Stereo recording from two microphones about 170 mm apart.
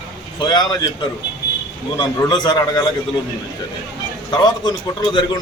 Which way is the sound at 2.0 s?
25° left (ahead or behind).